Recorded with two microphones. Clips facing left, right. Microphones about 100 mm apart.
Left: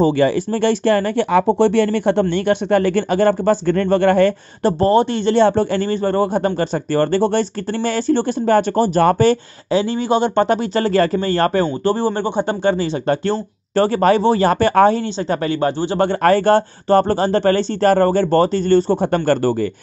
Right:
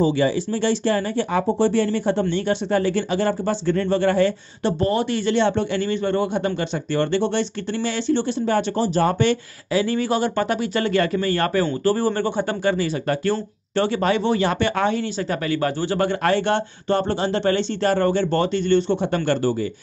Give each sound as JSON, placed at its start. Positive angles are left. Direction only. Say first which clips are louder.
{"t": 0.0, "sound": "speech", "louder": "left 4 dB", "side_deg": 55}
{"t": 4.6, "sound": "a man's voice", "louder": "left 6 dB", "side_deg": 40}
{"t": 9.2, "sound": "a man's voice", "louder": "left 5 dB", "side_deg": 30}
{"t": 16.2, "sound": "speech", "louder": "left 7 dB", "side_deg": 40}